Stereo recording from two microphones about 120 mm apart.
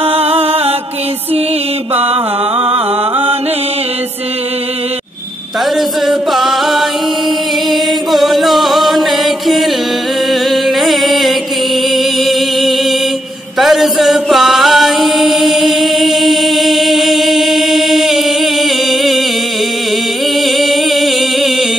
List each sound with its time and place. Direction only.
0.0 s music: 55° right (ahead or behind)
2.6 s music: 50° right (ahead or behind)
5.8 s music: centre (ahead or behind)
7.7 s chant: centre (ahead or behind)
10.5 s music: centre (ahead or behind)
13.6 s chant: centre (ahead or behind)
20.3 s singing: centre (ahead or behind)